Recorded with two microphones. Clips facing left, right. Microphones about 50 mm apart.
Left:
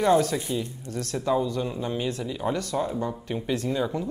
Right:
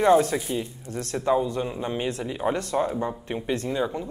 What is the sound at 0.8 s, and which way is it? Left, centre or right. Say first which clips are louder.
Speech: right 3 dB; right.